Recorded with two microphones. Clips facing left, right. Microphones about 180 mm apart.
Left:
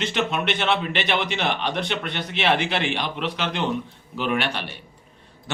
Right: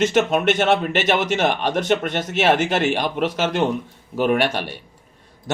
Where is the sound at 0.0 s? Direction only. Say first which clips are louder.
Right 7 dB; 45° right (ahead or behind).